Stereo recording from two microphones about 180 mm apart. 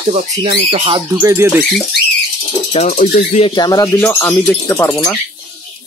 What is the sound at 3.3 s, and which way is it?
Speech, 25° left (ahead or behind).